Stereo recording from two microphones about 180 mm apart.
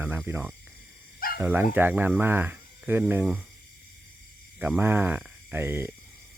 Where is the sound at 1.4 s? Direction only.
10° right (ahead or behind).